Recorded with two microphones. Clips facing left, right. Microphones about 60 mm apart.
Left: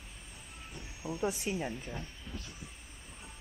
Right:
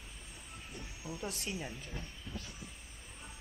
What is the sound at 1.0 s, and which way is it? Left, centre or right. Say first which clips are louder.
Speech: left 8 dB; left.